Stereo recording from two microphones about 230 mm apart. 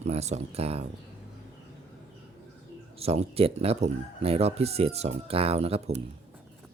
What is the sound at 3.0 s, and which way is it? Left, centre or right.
Speech, right.